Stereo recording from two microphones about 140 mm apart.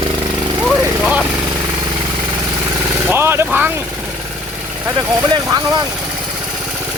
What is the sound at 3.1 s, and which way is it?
Vehicle, 15° right (ahead or behind).